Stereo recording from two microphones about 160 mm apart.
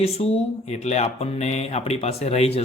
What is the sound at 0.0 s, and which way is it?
Speech, 40° left (ahead or behind).